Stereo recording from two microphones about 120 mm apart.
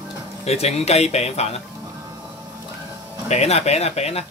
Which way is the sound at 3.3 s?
60° left (ahead or behind).